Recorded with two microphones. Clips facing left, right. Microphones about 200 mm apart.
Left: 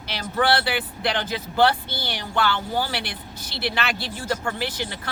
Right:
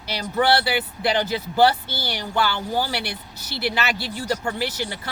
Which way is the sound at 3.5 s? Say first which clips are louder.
Right 2 dB; 20° left (ahead or behind).